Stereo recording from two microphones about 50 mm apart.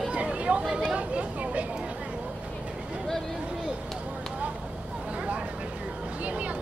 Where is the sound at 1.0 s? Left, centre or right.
Right.